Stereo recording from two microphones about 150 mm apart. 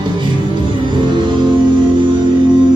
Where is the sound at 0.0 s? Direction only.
30° right (ahead or behind).